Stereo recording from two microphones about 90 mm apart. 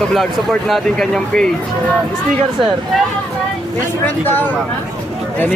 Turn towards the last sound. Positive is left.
turn(degrees=20)  # may be behind; listen again after turning